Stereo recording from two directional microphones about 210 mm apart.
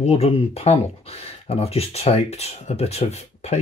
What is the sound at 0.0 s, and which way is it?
Speech, 30° left (ahead or behind).